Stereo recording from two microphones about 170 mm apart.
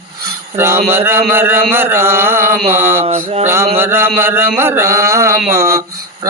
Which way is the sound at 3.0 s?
40° right (ahead or behind).